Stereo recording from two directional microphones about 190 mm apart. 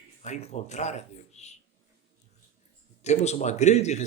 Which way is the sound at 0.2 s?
35° left (ahead or behind).